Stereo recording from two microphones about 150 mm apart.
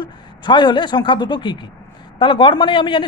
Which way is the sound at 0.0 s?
30° left (ahead or behind).